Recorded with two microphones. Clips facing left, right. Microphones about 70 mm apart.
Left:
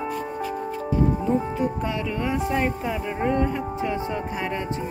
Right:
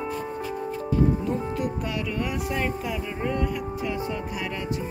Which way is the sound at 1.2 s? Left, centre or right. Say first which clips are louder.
Left 4 dB; centre.